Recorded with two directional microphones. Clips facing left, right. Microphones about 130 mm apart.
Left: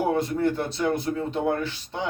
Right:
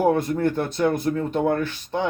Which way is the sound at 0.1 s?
50° right (ahead or behind).